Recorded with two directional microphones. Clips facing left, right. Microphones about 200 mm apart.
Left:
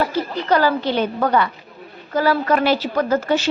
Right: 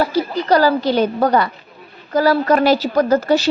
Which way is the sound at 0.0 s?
35° right (ahead or behind).